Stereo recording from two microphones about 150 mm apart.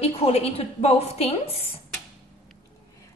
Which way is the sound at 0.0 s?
40° left (ahead or behind).